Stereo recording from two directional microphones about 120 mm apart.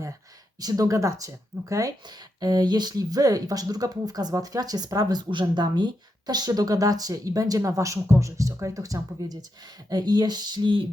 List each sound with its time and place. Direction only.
0.6 s speech: 30° right (ahead or behind)